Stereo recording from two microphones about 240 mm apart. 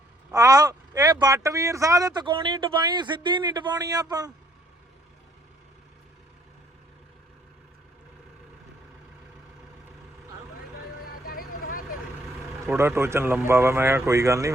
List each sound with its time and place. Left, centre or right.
0.3 s speech: centre
11.3 s vehicle: left
12.6 s speech: centre